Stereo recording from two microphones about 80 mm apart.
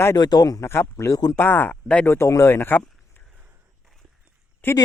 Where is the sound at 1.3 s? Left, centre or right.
Left.